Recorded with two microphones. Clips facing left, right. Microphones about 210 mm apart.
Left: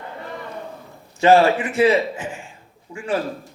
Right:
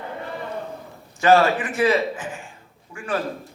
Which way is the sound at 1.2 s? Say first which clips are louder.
Left 2 dB; 25° left (ahead or behind).